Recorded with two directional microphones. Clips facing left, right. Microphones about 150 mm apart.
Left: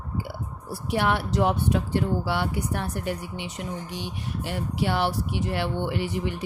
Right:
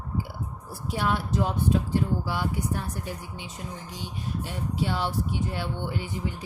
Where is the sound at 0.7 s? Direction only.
70° left (ahead or behind).